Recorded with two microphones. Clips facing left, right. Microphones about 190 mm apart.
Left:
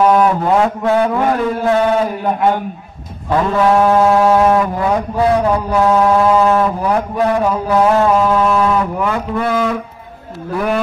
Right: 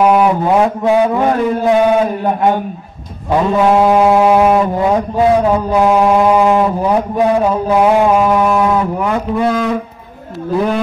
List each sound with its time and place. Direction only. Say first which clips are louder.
0.0 s speech: right 1 dB; 10° right (ahead or behind)